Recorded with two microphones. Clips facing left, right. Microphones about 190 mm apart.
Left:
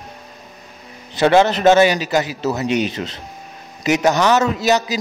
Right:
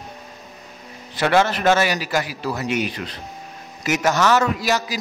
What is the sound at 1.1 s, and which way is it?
A man's voice, 20° left (ahead or behind).